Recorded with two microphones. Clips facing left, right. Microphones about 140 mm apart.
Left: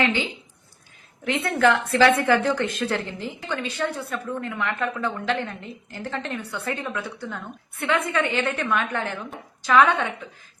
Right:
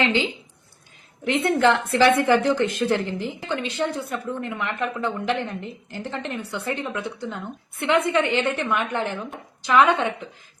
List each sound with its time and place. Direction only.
1.2 s a woman's voice: 20° right (ahead or behind)